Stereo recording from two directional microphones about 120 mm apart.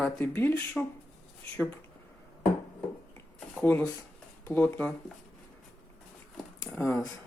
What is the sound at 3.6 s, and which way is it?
Speech, 10° left (ahead or behind).